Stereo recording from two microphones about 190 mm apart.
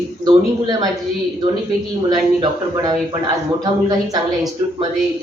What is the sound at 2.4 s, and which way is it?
Speech, 20° right (ahead or behind).